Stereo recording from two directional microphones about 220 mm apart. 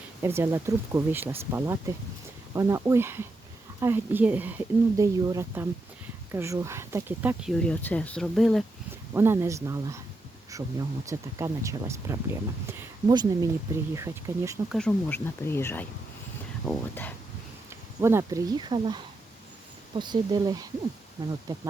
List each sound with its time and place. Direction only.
0.2 s speech: 10° right (ahead or behind)
7.6 s speech: 5° left (ahead or behind)
9.1 s speech: 10° right (ahead or behind)
14.7 s speech: 5° left (ahead or behind)
18.0 s speech: 15° right (ahead or behind)